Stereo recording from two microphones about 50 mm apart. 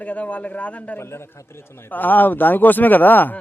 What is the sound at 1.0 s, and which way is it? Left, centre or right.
Speech, left.